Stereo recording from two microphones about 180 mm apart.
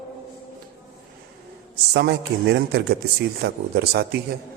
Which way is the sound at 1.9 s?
70° right (ahead or behind).